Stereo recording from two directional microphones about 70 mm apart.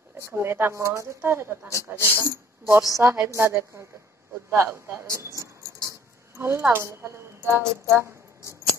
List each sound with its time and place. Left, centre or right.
0.3 s speech: right